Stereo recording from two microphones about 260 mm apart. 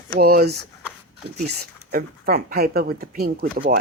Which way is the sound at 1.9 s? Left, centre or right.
Right.